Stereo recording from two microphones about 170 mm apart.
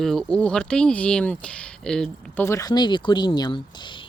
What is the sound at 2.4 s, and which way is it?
Speech, 20° left (ahead or behind).